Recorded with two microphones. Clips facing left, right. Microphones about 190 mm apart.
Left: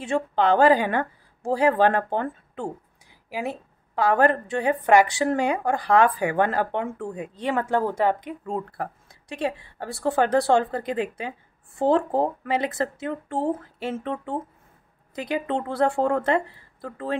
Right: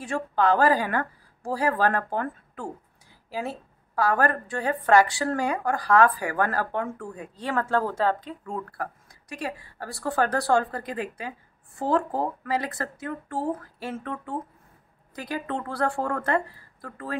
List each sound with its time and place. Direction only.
0.0 s a woman's voice: 25° left (ahead or behind)